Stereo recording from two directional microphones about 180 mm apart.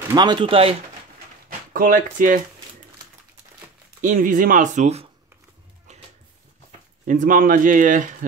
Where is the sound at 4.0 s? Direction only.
45° right (ahead or behind).